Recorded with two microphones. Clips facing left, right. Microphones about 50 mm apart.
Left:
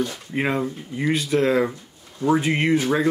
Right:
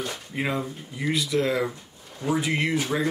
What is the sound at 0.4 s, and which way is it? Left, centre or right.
Speech, left.